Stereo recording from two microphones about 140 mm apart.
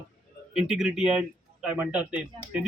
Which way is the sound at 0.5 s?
5° right (ahead or behind).